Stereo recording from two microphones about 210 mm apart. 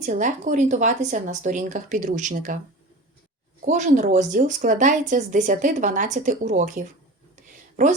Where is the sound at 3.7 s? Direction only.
35° right (ahead or behind).